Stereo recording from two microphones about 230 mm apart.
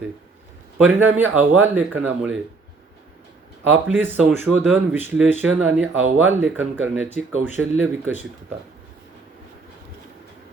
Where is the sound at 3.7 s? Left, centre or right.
Centre.